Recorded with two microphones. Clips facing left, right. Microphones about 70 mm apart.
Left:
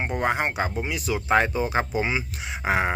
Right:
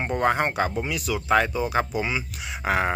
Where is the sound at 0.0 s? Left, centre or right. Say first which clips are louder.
Right 2 dB; centre.